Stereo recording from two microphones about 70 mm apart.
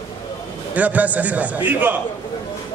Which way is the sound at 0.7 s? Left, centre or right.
Right.